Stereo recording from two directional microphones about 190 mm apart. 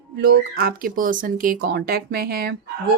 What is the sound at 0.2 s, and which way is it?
Speech, 55° right (ahead or behind).